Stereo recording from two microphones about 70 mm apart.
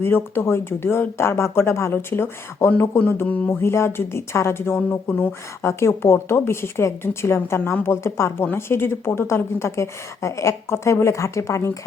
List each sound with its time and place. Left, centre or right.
0.0 s speech: left
3.2 s a sound: centre
3.5 s speech: left
5.6 s a woman's voice: left